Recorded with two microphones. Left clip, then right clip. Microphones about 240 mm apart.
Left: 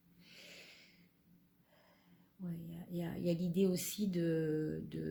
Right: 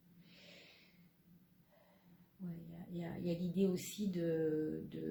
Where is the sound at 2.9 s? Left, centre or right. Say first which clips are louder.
Left 4 dB; left.